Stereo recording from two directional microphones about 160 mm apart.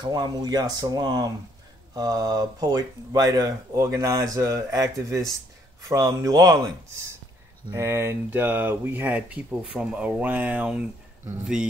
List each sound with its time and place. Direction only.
0.0 s speech: 25° right (ahead or behind)
7.7 s speech: 15° right (ahead or behind)